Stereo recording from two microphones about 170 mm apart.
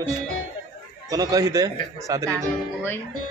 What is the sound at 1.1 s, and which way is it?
A man's voice, 20° right (ahead or behind).